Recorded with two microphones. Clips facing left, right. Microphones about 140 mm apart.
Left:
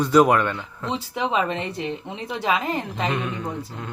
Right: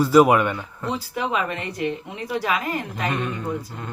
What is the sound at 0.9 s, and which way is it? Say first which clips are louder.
A woman's voice: left 2 dB; 25° left (ahead or behind).